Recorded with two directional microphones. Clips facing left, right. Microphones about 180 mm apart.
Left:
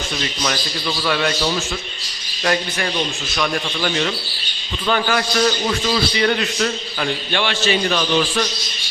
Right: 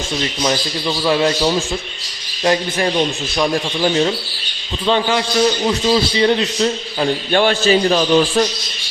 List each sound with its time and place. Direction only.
0.2 s a man's voice: 25° right (ahead or behind)
7.3 s a man's voice: 40° right (ahead or behind)